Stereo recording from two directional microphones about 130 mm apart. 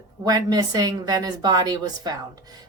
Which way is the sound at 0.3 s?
30° right (ahead or behind).